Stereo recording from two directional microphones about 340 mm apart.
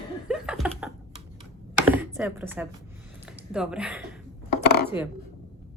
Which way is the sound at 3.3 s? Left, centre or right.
Centre.